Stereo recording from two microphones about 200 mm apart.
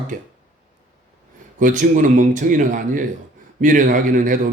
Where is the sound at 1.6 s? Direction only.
40° right (ahead or behind).